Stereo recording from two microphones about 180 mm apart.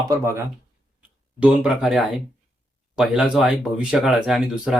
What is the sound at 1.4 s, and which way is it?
Speech, 5° right (ahead or behind).